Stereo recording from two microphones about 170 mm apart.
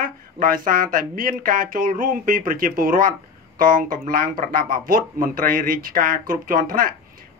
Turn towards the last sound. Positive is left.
turn(degrees=-55)  # may be behind; listen again after turning